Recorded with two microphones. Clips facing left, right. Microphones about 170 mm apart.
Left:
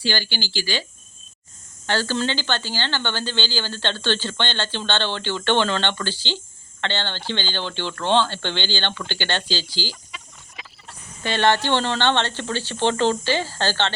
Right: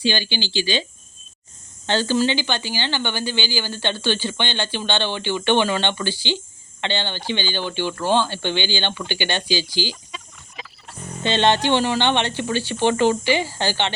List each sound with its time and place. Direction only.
0.0 s speech: 20° right (ahead or behind)
1.9 s speech: 20° right (ahead or behind)
11.2 s speech: 20° right (ahead or behind)